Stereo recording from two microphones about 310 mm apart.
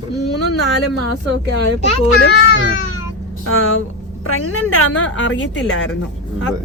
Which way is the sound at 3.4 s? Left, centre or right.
Left.